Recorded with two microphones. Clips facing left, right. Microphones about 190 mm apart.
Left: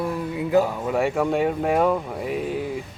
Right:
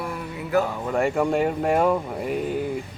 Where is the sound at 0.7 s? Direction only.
5° left (ahead or behind).